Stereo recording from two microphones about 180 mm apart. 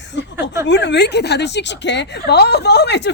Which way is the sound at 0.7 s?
70° left (ahead or behind).